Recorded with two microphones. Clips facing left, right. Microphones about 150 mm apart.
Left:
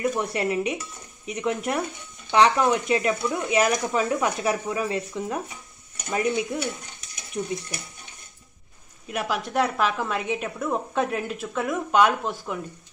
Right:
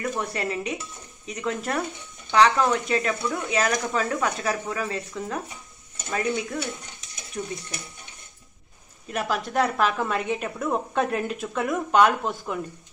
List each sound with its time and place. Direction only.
0.2 s speech: 20° left (ahead or behind)
9.2 s a woman's voice: centre (ahead or behind)